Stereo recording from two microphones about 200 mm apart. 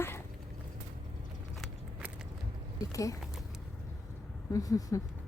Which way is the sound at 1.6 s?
5° right (ahead or behind).